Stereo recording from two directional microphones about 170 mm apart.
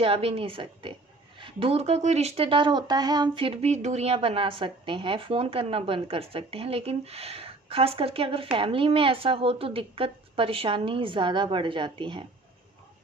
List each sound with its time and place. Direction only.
0.0 s speech: 35° right (ahead or behind)